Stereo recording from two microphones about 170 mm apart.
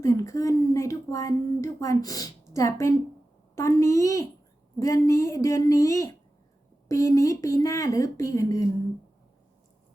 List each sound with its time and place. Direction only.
0.0 s speech: 15° left (ahead or behind)